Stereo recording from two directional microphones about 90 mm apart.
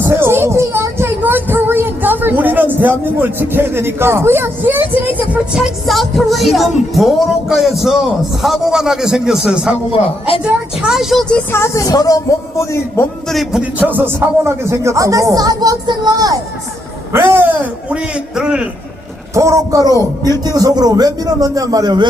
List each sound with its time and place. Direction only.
0.1 s a sound: 25° right (ahead or behind)
5.5 s speech: centre (ahead or behind)
11.5 s speech: 30° left (ahead or behind)
13.3 s speech: centre (ahead or behind)
13.6 s a man's voice: 15° right (ahead or behind); by 16.4 s 45° right (ahead or behind)
17.3 s a man's voice: 15° right (ahead or behind)
19.3 s a man's voice: 35° right (ahead or behind)